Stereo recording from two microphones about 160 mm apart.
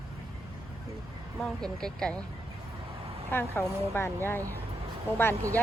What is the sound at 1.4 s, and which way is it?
Speech, 5° left (ahead or behind).